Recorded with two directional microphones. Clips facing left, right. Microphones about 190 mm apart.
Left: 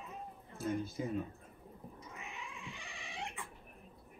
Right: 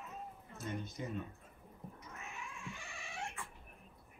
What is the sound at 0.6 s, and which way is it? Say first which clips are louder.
Speech: left 6 dB; 5° left (ahead or behind).